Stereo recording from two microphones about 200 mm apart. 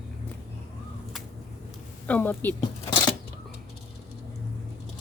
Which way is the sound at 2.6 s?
25° left (ahead or behind).